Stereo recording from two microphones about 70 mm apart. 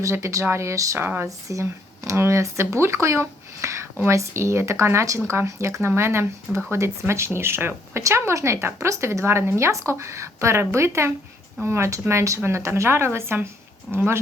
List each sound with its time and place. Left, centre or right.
0.0 s speech: right
0.9 s speech: right